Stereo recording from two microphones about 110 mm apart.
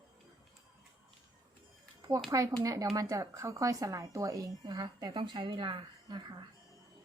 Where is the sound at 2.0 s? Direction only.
30° right (ahead or behind).